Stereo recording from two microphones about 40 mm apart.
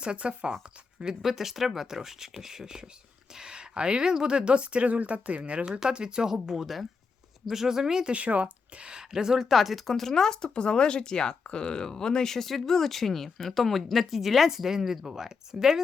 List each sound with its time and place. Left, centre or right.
0.0 s speech: right
1.2 s speech: centre; by 5.4 s right
5.9 s speech: right
8.0 s speech: right; by 9.5 s centre
9.5 s speech: centre